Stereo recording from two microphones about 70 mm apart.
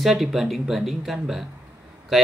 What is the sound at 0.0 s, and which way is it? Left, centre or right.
Speech, centre.